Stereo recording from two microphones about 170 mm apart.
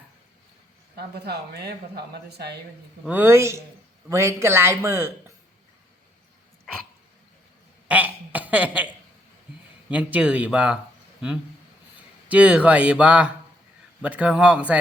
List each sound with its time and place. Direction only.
0.9 s speech: 70° right (ahead or behind)
3.1 s speech: 10° right (ahead or behind)
7.9 s a sound: 10° right (ahead or behind)
9.9 s speech: 10° right (ahead or behind)
12.3 s speech: 5° right (ahead or behind)